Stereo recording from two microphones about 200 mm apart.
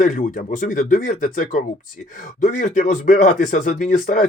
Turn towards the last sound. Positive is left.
turn(degrees=40)  # may be behind; listen again after turning